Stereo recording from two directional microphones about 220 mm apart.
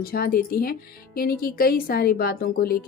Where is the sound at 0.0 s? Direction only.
45° left (ahead or behind).